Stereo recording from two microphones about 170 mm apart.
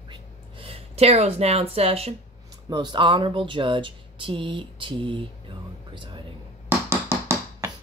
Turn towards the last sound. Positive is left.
turn(degrees=-15)  # may be behind; listen again after turning